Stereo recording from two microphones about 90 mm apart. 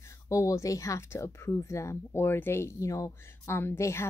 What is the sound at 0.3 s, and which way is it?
Speech, 35° left (ahead or behind).